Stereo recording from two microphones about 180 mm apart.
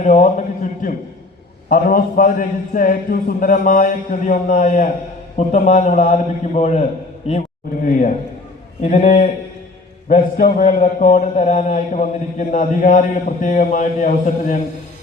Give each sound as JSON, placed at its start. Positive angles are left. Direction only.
{"t": 0.0, "sound": "a man's voice", "side_deg": 40}
{"t": 7.9, "sound": "a man's voice", "side_deg": 45}